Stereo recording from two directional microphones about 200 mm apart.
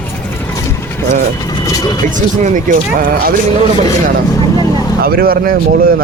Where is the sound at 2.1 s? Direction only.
40° right (ahead or behind).